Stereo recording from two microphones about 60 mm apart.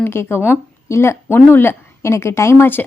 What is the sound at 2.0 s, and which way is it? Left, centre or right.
Speech, left.